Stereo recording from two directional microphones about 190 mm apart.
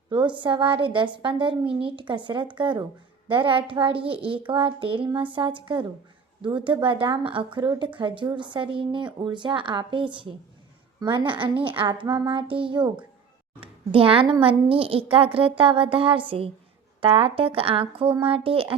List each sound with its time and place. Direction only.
0.1 s a woman's voice: 25° right (ahead or behind)